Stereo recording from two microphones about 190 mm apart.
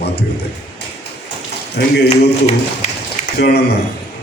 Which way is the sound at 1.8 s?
60° left (ahead or behind).